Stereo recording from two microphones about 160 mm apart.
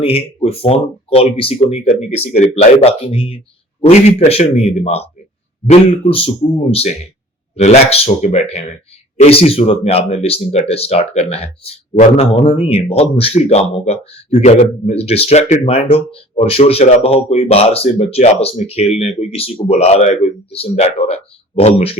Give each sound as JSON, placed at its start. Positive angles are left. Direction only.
{"t": 0.0, "sound": "speech", "side_deg": 35}